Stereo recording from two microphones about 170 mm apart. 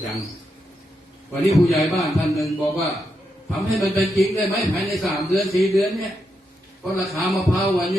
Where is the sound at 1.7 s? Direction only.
35° left (ahead or behind).